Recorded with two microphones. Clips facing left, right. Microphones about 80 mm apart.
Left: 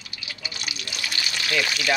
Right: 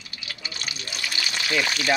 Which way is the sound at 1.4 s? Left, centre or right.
Centre.